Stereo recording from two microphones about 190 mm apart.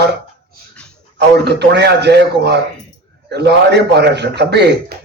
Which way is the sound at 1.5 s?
60° right (ahead or behind).